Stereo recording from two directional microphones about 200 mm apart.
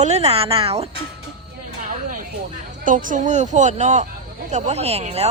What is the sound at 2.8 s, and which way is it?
Speech, 40° right (ahead or behind).